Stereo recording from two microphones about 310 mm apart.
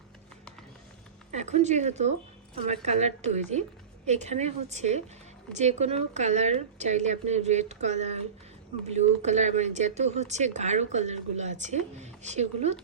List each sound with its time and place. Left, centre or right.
1.3 s speech: right